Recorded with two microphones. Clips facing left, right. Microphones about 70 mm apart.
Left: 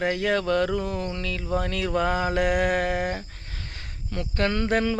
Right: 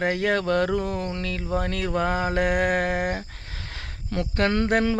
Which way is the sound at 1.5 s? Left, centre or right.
Right.